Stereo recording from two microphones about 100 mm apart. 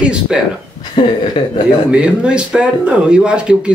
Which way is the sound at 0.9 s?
55° left (ahead or behind).